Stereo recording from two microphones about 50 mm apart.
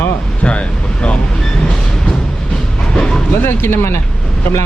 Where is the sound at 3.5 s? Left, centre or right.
Left.